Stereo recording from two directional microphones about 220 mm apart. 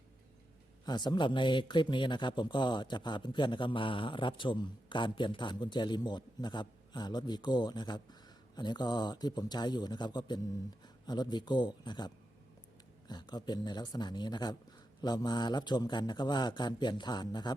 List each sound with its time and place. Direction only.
0.9 s speech: 20° left (ahead or behind)